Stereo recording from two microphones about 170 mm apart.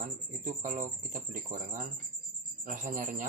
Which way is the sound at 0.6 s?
50° right (ahead or behind).